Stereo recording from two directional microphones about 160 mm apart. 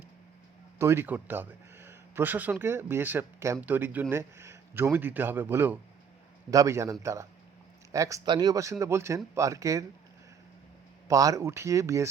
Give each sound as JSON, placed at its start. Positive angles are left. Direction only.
{"t": 0.8, "sound": "speech", "side_deg": -15}
{"t": 11.1, "sound": "speech", "side_deg": -20}